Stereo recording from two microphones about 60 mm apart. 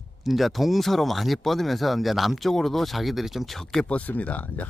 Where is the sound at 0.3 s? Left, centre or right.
Centre.